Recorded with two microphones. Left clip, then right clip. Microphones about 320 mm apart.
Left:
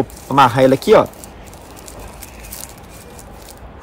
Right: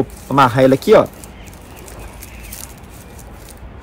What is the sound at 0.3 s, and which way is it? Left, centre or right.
Speech, centre.